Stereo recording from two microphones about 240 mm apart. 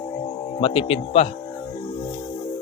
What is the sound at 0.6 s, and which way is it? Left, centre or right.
Speech, left.